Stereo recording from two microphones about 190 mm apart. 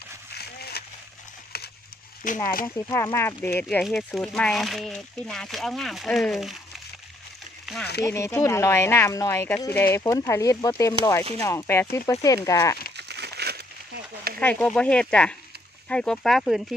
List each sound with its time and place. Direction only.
0.3 s a sound: 55° left (ahead or behind)
2.2 s speech: 45° left (ahead or behind)
2.6 s speech: 15° left (ahead or behind)
3.6 s speech: centre (ahead or behind)
7.6 s speech: centre (ahead or behind)
8.0 s speech: 15° left (ahead or behind)
12.9 s crumpling: 60° right (ahead or behind)
14.4 s speech: 5° left (ahead or behind)